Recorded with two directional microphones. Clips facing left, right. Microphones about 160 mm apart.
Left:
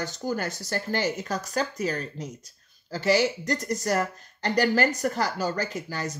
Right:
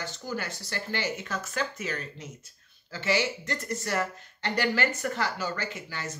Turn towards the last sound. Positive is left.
turn(degrees=40)  # may be behind; listen again after turning